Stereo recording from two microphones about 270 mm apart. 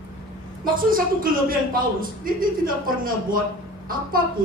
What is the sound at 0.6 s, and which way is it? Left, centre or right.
A man's voice, right.